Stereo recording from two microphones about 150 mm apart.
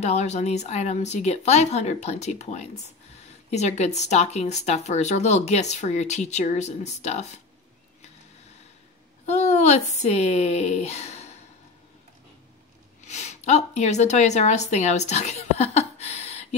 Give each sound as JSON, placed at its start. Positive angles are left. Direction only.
{"t": 0.0, "sound": "speech", "side_deg": 50}
{"t": 9.2, "sound": "speech", "side_deg": 50}
{"t": 13.0, "sound": "a woman's voice", "side_deg": 50}